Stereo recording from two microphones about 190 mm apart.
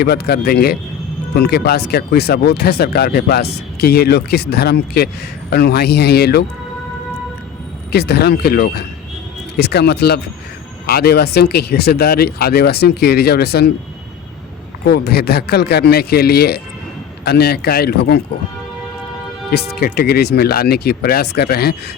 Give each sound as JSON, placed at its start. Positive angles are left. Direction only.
{"t": 0.0, "sound": "speech", "side_deg": 60}
{"t": 7.9, "sound": "speech", "side_deg": 60}
{"t": 14.8, "sound": "speech", "side_deg": 60}
{"t": 19.5, "sound": "speech", "side_deg": 55}